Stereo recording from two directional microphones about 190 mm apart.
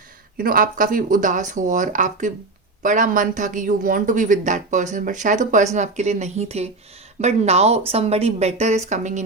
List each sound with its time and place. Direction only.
0.3 s speech: 50° right (ahead or behind)